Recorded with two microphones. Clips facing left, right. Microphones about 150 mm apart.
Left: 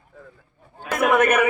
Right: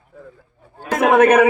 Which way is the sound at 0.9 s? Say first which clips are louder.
Right 6 dB; 90° right.